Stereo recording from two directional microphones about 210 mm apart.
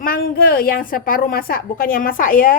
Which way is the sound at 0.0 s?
40° left (ahead or behind).